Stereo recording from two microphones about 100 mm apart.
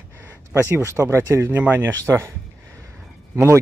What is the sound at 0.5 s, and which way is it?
Speech, 25° right (ahead or behind).